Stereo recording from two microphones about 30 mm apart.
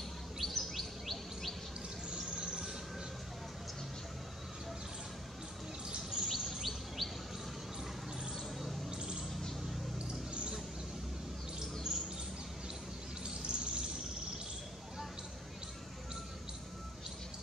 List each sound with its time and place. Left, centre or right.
0.4 s bird vocalization: centre
2.3 s train: right
5.9 s bird vocalization: right
6.2 s bird vocalization: centre
8.9 s bird: right
9.3 s bird: centre
11.9 s bird: centre
13.2 s bird: right